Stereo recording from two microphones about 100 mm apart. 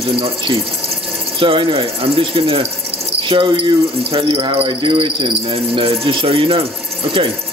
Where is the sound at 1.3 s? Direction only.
60° right (ahead or behind).